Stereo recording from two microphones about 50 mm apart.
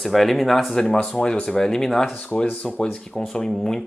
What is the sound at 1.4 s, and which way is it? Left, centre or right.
Speech, centre.